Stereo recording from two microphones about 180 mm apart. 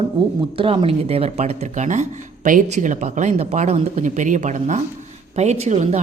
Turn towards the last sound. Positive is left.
turn(degrees=-40)  # may be behind; listen again after turning